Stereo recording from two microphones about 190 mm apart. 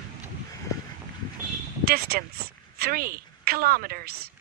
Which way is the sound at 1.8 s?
55° right (ahead or behind).